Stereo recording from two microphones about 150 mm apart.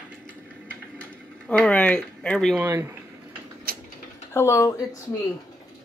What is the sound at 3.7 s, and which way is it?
Tick-tock, 80° right.